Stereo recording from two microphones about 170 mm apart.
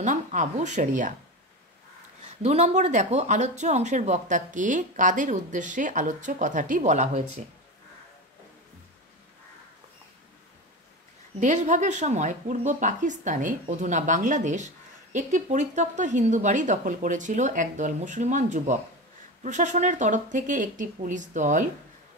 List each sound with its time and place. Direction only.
0.0 s speech: 45° right (ahead or behind)
2.2 s speech: 40° right (ahead or behind)
11.3 s speech: 45° right (ahead or behind)